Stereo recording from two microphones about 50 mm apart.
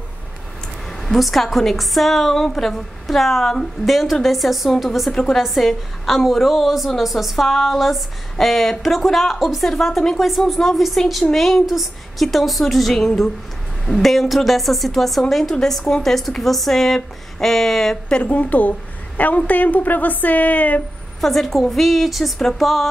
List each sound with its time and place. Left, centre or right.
0.8 s a woman's voice: centre
18.1 s a woman's voice: left
21.2 s a woman's voice: centre